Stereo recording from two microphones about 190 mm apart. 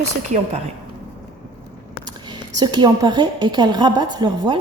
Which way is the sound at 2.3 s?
25° right (ahead or behind).